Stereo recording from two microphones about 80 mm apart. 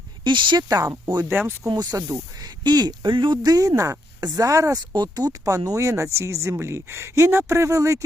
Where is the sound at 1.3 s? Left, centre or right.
Right.